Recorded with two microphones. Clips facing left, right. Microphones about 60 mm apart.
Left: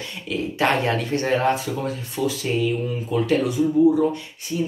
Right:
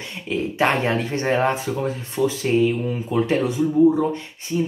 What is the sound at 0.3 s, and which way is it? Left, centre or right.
Speech, right.